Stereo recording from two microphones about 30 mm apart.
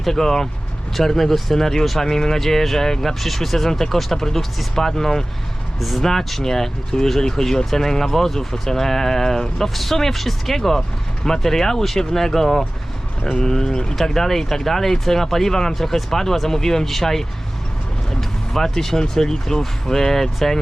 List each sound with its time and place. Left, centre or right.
0.0 s speech: centre
5.8 s speech: centre
18.1 s vehicle: centre
18.9 s speech: centre